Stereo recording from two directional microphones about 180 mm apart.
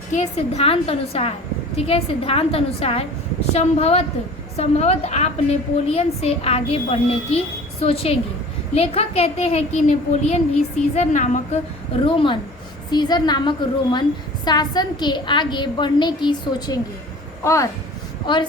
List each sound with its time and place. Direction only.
0.1 s a child's voice: 35° left (ahead or behind)
12.0 s a woman's voice: 30° left (ahead or behind)